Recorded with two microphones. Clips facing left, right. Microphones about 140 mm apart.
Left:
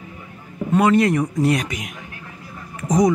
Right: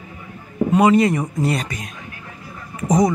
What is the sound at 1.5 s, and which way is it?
Speech, 10° left (ahead or behind).